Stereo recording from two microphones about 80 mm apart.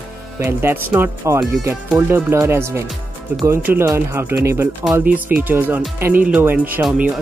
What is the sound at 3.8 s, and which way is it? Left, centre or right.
Speech, right.